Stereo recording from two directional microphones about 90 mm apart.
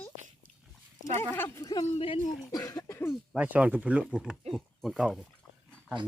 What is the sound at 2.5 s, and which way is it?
Cough, 45° left (ahead or behind).